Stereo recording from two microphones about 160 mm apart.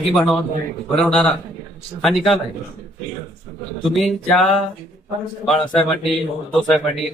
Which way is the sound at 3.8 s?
Centre (ahead or behind).